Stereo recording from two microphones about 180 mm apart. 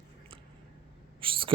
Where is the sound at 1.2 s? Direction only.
30° right (ahead or behind).